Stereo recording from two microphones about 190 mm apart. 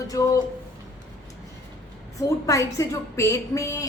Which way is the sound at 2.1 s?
15° left (ahead or behind).